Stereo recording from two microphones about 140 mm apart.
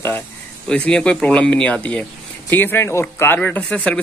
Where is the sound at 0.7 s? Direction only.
10° left (ahead or behind).